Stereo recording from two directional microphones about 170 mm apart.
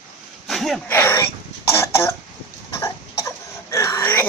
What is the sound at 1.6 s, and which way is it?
Cough, 15° left (ahead or behind).